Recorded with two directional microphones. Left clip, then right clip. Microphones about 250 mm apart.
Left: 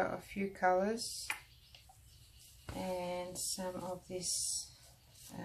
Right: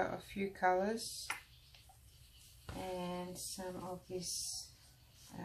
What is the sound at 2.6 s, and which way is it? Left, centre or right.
Speech, centre.